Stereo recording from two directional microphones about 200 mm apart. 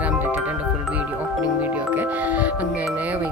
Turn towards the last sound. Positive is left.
turn(degrees=-5)  # may be behind; listen again after turning